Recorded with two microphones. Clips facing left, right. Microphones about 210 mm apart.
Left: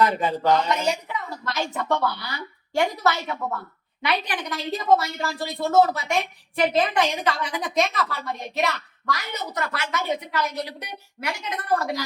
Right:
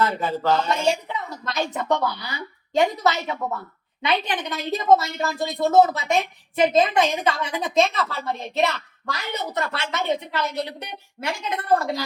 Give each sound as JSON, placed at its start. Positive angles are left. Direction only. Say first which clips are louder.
{"t": 0.0, "sound": "speech", "louder": "left 1 dB", "side_deg": 15}
{"t": 0.8, "sound": "a woman's voice", "louder": "right 3 dB", "side_deg": -25}